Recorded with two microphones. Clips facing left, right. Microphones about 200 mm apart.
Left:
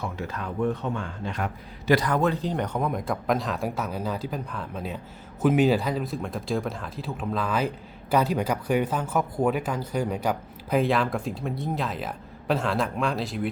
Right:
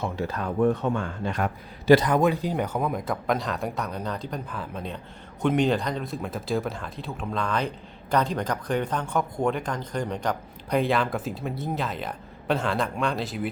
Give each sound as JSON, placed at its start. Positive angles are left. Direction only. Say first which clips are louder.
{"t": 0.0, "sound": "speech", "louder": "right 3 dB", "side_deg": -35}
{"t": 0.6, "sound": "speech", "louder": "right 4 dB", "side_deg": -50}
{"t": 1.9, "sound": "speech", "louder": "right 4 dB", "side_deg": -20}